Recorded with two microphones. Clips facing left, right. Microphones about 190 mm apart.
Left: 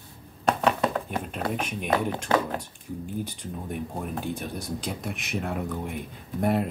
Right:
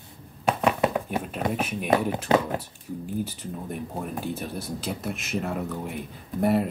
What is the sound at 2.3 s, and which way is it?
Speech, 20° right (ahead or behind).